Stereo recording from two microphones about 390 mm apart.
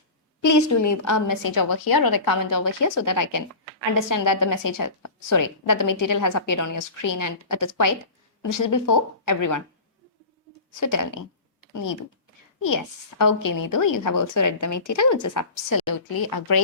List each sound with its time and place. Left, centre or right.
0.4 s a woman's voice: left
10.8 s a woman's voice: left